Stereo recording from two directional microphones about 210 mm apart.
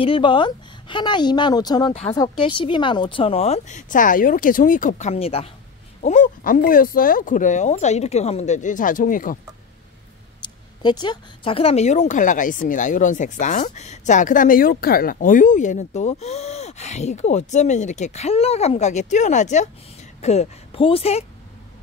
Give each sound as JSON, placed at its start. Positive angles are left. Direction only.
{"t": 0.0, "sound": "speech", "side_deg": 25}
{"t": 10.4, "sound": "speech", "side_deg": 20}